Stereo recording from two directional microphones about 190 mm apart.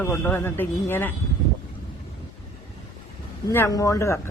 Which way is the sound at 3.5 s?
15° left (ahead or behind).